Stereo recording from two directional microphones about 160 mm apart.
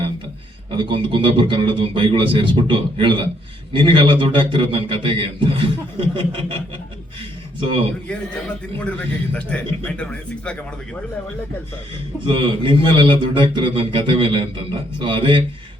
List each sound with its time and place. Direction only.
0.7 s speech: 30° right (ahead or behind)
8.8 s a man's voice: 5° left (ahead or behind)
12.2 s speech: 30° right (ahead or behind)